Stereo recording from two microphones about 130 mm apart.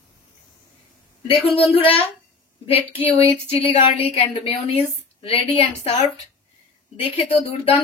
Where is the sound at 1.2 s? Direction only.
45° left (ahead or behind).